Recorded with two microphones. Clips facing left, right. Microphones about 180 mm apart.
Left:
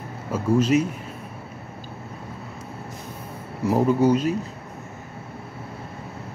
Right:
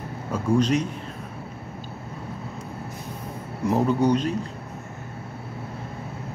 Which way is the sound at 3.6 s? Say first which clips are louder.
Left 2 dB; 5° left (ahead or behind).